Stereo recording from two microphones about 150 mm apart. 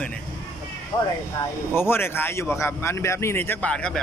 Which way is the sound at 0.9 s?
20° left (ahead or behind).